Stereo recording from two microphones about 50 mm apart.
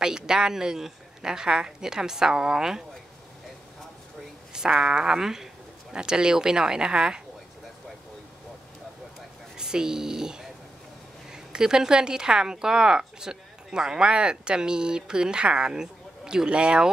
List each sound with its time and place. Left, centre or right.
0.0 s speech: centre
4.5 s speech: centre
9.6 s a woman's voice: centre